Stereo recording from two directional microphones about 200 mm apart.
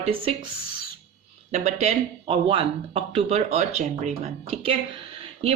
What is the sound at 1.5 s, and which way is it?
Speech, 35° right (ahead or behind).